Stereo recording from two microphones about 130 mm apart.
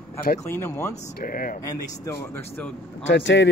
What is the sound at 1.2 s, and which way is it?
Speech, 90° left.